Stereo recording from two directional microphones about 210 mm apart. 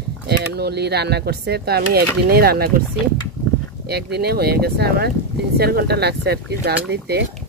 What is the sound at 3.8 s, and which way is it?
Speech, 50° right (ahead or behind).